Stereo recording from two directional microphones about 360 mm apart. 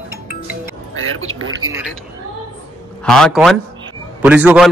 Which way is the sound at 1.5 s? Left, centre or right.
Centre.